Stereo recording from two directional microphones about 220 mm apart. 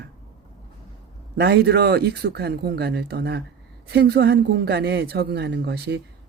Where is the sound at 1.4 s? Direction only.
45° right (ahead or behind).